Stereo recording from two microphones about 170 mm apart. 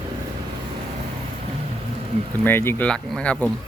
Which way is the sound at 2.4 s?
15° left (ahead or behind).